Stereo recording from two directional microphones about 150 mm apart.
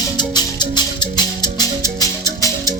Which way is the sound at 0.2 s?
30° left (ahead or behind).